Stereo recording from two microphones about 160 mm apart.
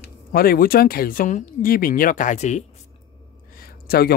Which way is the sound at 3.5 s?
70° left (ahead or behind).